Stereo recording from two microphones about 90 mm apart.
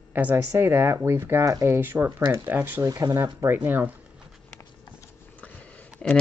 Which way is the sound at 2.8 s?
45° right (ahead or behind).